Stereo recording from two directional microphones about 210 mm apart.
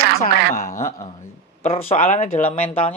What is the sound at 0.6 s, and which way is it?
Speech, 15° left (ahead or behind).